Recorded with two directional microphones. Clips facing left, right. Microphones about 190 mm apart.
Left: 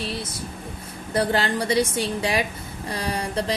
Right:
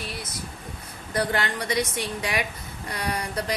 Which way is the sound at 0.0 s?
30° left (ahead or behind).